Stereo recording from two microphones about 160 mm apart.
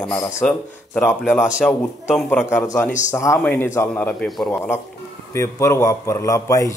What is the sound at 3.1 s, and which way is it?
A man's voice, 20° left (ahead or behind).